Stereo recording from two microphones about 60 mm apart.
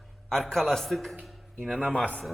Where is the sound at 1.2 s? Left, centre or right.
Centre.